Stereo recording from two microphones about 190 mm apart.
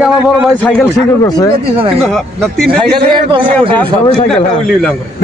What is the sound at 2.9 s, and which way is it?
Speech, 25° right (ahead or behind).